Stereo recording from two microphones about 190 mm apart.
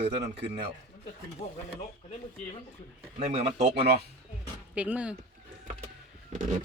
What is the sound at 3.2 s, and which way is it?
Speech, 35° right (ahead or behind).